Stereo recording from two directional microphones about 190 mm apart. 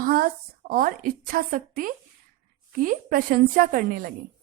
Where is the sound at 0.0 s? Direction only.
50° right (ahead or behind).